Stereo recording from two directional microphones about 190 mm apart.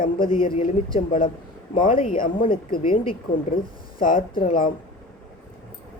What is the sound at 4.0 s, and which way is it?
Speech, 50° left (ahead or behind).